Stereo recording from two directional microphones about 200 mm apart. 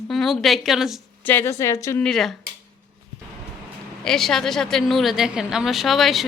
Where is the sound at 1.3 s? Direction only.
10° left (ahead or behind).